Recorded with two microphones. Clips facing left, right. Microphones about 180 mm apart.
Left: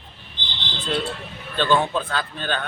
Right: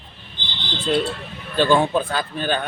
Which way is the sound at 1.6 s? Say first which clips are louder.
Right 3 dB; 10° right (ahead or behind).